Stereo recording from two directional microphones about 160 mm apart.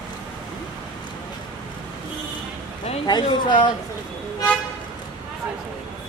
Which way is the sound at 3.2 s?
30° left (ahead or behind).